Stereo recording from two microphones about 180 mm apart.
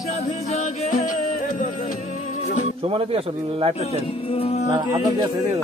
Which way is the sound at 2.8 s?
30° right (ahead or behind).